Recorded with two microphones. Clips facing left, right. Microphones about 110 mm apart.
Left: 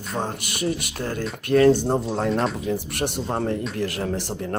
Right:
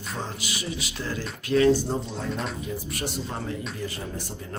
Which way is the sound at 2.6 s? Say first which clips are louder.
Left 6 dB; 70° left (ahead or behind).